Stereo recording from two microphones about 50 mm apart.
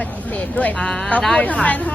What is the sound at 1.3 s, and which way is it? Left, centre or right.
Speech, left.